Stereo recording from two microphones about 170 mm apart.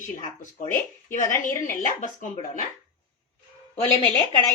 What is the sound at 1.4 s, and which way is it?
A woman's voice, 50° left (ahead or behind).